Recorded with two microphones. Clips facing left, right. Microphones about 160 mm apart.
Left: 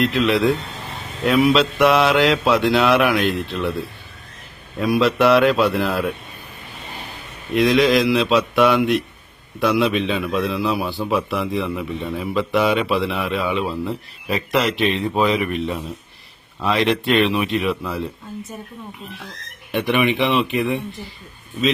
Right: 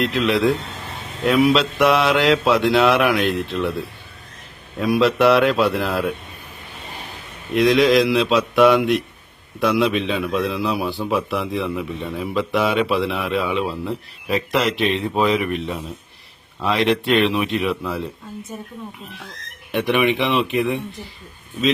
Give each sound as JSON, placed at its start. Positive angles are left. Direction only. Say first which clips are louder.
{"t": 0.0, "sound": "a man's voice", "louder": "left 1 dB", "side_deg": 0}
{"t": 4.8, "sound": "a man's voice", "louder": "even", "side_deg": 0}
{"t": 7.5, "sound": "a man's voice", "louder": "right 1 dB", "side_deg": 0}
{"t": 19.7, "sound": "a man's voice", "louder": "even", "side_deg": 0}